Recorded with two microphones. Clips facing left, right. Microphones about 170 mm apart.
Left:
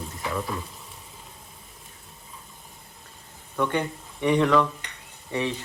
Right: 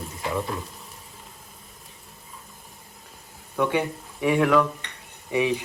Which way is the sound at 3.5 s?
10° right (ahead or behind).